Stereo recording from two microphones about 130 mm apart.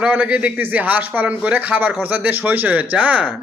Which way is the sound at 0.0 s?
10° right (ahead or behind).